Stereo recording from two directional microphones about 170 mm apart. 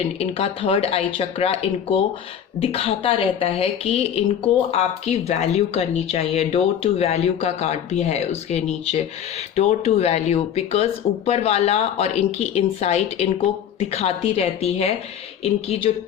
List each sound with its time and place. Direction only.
0.2 s speech: 35° left (ahead or behind)